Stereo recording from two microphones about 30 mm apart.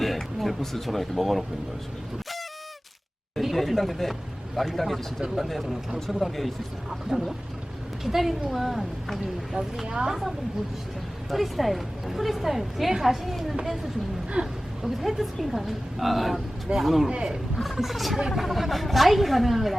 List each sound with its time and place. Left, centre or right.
0.0 s a sound: centre
0.9 s a woman's voice: centre
3.4 s a woman's voice: centre
7.1 s speech: centre
8.0 s a woman's voice: centre
9.8 s speech: right
11.3 s a woman's voice: centre
14.4 s speech: right
14.8 s a woman's voice: centre
17.1 s speech: right
17.7 s a woman's voice: centre